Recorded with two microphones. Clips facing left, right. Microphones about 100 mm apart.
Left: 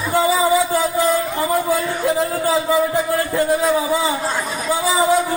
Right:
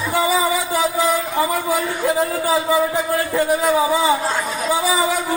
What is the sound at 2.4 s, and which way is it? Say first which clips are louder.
Speech: left 1 dB; 15° right (ahead or behind).